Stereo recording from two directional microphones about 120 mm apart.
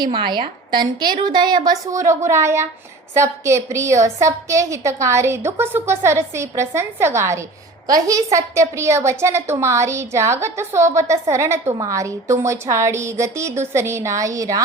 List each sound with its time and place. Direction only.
0.0 s a woman's voice: 40° right (ahead or behind)